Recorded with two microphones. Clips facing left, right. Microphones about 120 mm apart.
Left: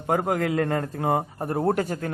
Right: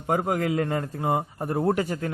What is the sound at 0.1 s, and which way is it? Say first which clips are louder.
A man's voice: left 1 dB; 45° left (ahead or behind).